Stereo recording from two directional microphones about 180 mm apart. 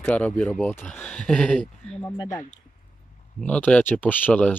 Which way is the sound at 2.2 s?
20° left (ahead or behind).